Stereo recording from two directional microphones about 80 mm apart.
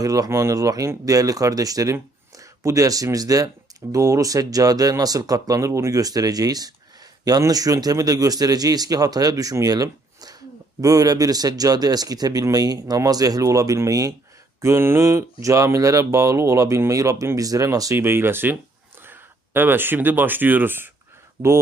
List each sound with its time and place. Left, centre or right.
0.0 s speech: right
0.3 s speech: right
17.9 s speech: right